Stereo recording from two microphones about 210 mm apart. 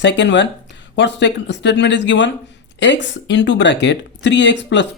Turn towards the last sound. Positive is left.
turn(degrees=55)  # may be behind; listen again after turning